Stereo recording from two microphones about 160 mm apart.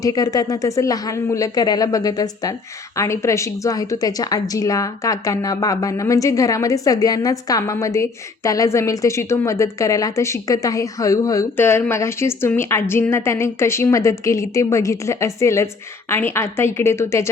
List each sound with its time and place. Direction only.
0.0 s a woman's voice: 20° left (ahead or behind)